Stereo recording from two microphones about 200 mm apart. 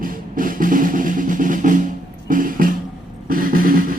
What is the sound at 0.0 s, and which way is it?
Drum, 45° right (ahead or behind).